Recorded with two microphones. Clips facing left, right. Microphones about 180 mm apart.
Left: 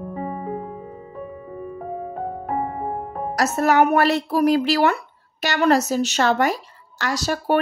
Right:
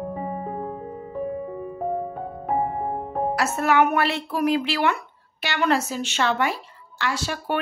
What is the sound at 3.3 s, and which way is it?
A woman's voice, 40° left (ahead or behind).